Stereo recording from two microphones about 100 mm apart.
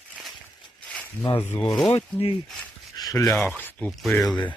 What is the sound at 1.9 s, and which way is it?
Speech, 65° left (ahead or behind).